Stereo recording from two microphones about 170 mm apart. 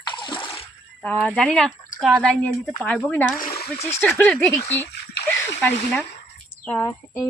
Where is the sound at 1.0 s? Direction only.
5° left (ahead or behind).